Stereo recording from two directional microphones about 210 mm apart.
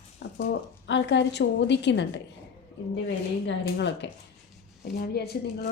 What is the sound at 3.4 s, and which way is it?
Speech, 60° left (ahead or behind).